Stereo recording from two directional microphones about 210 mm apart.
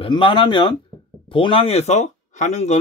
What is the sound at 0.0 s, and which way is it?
Speech, 20° left (ahead or behind).